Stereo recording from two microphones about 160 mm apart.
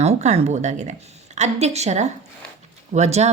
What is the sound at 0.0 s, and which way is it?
Speech, 40° right (ahead or behind).